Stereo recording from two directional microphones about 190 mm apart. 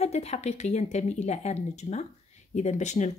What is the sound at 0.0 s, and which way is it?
A woman's voice, 35° left (ahead or behind).